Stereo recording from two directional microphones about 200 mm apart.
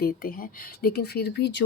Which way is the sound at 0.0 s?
45° left (ahead or behind).